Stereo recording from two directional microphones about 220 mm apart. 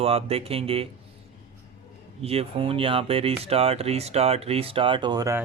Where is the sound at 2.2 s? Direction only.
25° right (ahead or behind).